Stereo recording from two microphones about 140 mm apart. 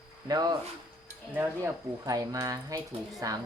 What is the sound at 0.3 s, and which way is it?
Speech, 25° right (ahead or behind).